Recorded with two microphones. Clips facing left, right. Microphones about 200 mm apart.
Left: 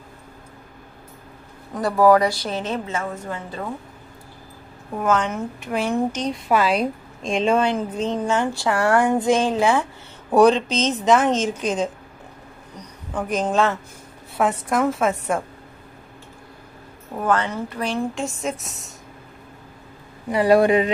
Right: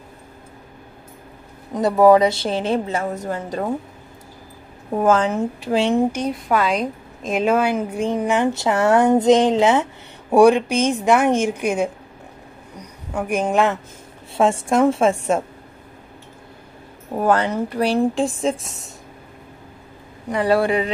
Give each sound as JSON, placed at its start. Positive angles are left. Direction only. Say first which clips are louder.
{"t": 1.7, "sound": "speech", "louder": "right 3 dB", "side_deg": -20}
{"t": 4.9, "sound": "speech", "louder": "right 5 dB", "side_deg": -30}
{"t": 5.9, "sound": "speech", "louder": "right 3 dB", "side_deg": -10}
{"t": 6.3, "sound": "a woman's voice", "louder": "even", "side_deg": 0}
{"t": 7.2, "sound": "speech", "louder": "right 1 dB", "side_deg": -5}
{"t": 14.3, "sound": "speech", "louder": "right 4 dB", "side_deg": -25}
{"t": 17.1, "sound": "speech", "louder": "right 4 dB", "side_deg": -35}
{"t": 20.2, "sound": "speech", "louder": "left 2 dB", "side_deg": 5}
{"t": 20.5, "sound": "speech", "louder": "left 4 dB", "side_deg": 20}